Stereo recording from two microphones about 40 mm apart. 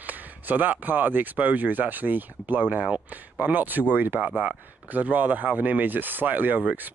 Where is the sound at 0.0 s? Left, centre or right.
Right.